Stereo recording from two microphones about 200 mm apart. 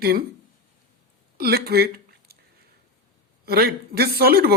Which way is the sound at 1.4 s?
50° right (ahead or behind).